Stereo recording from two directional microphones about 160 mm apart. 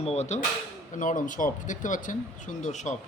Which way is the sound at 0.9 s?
55° left (ahead or behind).